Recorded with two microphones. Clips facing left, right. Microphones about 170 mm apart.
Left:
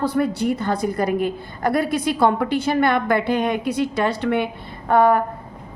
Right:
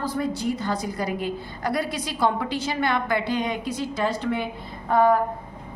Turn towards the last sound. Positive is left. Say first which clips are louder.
# left 3 dB
turn(degrees=70)  # may be behind; listen again after turning